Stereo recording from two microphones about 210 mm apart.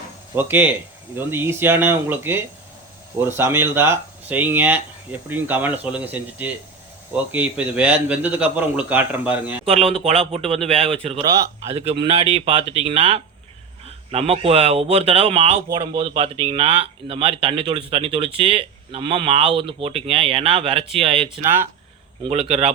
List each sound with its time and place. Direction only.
0.3 s a man's voice: 10° right (ahead or behind)
9.6 s speech: 25° right (ahead or behind)
21.3 s a man's voice: 10° right (ahead or behind)
22.2 s speech: 30° right (ahead or behind)